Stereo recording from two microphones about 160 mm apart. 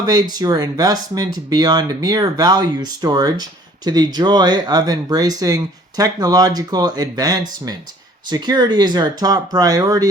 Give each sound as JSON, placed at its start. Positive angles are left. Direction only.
{"t": 0.0, "sound": "speech", "side_deg": -25}